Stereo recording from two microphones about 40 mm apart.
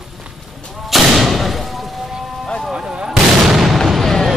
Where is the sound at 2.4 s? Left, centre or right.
Centre.